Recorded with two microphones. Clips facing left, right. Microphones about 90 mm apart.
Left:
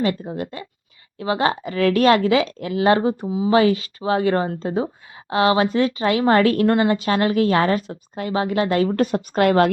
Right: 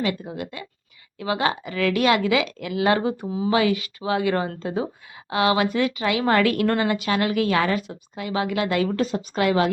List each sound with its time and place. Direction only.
0.0 s a woman's voice: 35° left (ahead or behind)
3.2 s speech: 15° left (ahead or behind)
3.5 s a woman's voice: 35° left (ahead or behind)
9.0 s a woman's voice: 55° left (ahead or behind)